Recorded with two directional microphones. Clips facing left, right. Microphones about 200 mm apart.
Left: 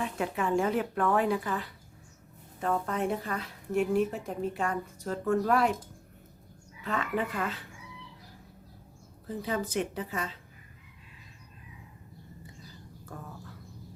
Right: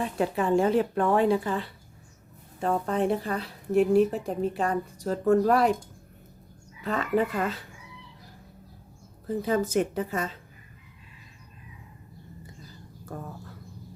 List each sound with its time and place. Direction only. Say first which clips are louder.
0.0 s a woman's voice: right 4 dB; 35° right (ahead or behind)
6.8 s a woman's voice: right 6 dB; 35° right (ahead or behind)
9.2 s a woman's voice: right 7 dB; 45° right (ahead or behind)
13.1 s a woman's voice: right 6 dB; 45° right (ahead or behind)